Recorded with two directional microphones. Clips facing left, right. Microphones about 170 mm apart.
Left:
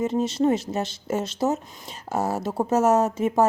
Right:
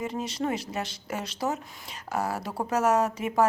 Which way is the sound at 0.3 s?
25° left (ahead or behind).